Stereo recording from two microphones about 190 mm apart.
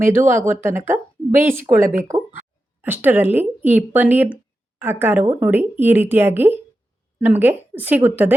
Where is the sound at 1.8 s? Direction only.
45° right (ahead or behind).